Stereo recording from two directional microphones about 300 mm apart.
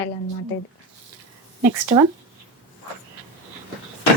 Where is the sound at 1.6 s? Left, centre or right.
Centre.